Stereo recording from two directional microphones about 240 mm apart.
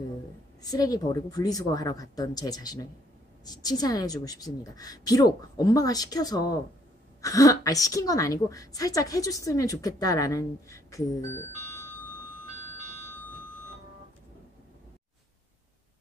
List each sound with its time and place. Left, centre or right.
0.6 s a woman's voice: centre